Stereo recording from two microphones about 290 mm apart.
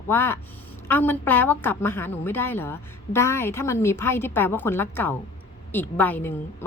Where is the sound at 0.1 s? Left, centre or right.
Centre.